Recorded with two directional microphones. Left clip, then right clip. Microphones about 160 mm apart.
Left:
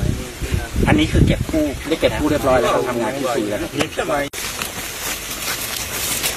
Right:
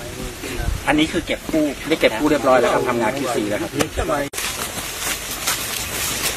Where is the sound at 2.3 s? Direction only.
30° right (ahead or behind).